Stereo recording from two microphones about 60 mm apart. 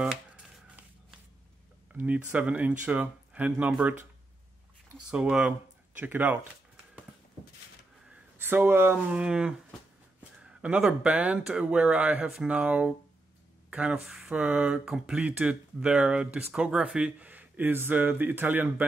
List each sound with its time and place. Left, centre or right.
0.0 s a sound: centre
2.0 s speech: right
5.9 s speech: right
8.4 s speech: right
8.9 s speech: centre
14.0 s speech: centre
14.3 s speech: right